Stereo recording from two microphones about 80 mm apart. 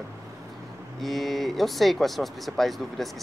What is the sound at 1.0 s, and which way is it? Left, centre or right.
Speech, centre.